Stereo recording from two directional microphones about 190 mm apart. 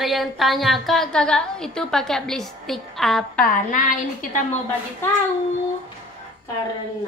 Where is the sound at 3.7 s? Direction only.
45° left (ahead or behind).